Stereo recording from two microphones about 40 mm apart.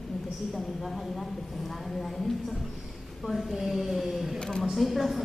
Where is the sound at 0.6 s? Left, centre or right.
Centre.